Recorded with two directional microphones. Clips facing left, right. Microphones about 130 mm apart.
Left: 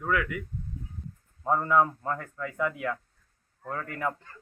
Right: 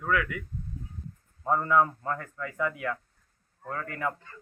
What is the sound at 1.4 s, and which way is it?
Speech, 10° left (ahead or behind).